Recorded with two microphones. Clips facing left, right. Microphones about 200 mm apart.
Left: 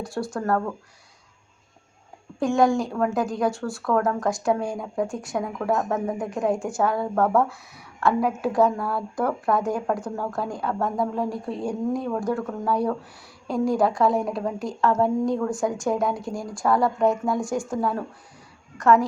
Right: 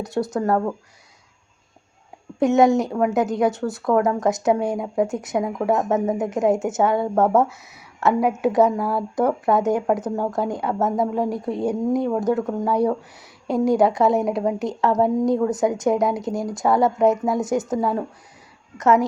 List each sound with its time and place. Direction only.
0.0 s speech: 20° right (ahead or behind)
2.4 s speech: 20° right (ahead or behind)